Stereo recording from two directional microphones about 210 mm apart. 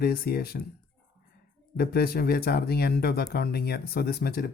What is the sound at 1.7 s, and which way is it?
Speech, 45° left (ahead or behind).